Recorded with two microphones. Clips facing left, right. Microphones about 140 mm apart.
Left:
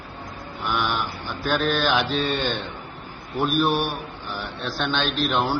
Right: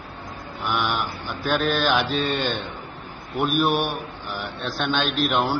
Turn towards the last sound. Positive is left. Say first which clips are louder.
# right 1 dB
turn(degrees=-10)  # may be behind; listen again after turning